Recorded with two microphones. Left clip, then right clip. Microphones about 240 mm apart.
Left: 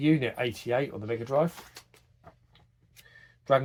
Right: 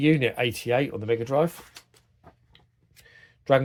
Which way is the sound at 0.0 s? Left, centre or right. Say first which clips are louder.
Right 4 dB; right.